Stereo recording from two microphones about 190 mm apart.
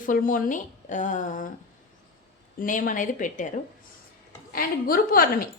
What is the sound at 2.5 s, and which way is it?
Speech, 45° left (ahead or behind).